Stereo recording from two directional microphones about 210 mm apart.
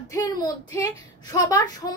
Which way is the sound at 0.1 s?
20° left (ahead or behind).